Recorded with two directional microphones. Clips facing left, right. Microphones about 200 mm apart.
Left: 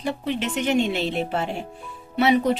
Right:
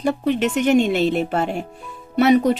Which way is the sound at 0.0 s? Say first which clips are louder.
Right 7 dB; 45° right (ahead or behind).